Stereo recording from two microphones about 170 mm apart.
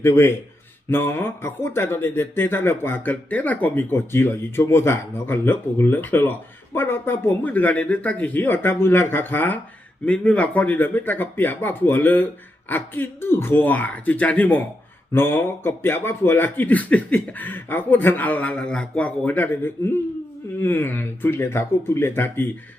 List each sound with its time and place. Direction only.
0.0 s speech: 15° left (ahead or behind)